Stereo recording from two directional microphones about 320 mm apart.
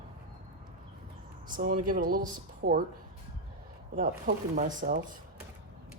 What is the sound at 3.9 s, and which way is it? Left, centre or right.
Speech, right.